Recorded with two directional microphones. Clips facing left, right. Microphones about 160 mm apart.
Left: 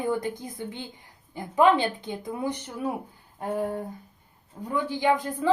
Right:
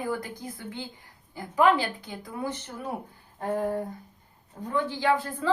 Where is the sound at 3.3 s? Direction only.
10° left (ahead or behind).